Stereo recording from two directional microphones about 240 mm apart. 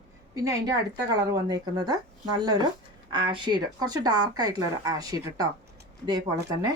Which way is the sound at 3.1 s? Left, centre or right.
Centre.